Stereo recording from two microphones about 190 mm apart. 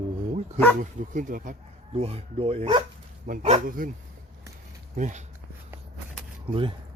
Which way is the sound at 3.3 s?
45° right (ahead or behind).